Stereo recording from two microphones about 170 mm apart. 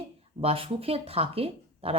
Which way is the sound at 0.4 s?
35° right (ahead or behind).